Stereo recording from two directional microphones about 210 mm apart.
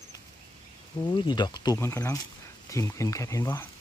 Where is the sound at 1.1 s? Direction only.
20° left (ahead or behind).